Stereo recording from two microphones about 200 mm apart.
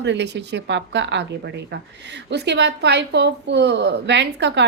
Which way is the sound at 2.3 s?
60° right (ahead or behind).